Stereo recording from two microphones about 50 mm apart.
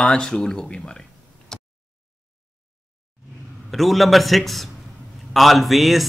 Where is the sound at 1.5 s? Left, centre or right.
Centre.